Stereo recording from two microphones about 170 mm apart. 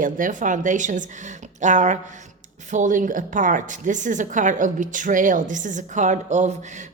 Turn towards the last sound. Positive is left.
turn(degrees=-45)  # may be behind; listen again after turning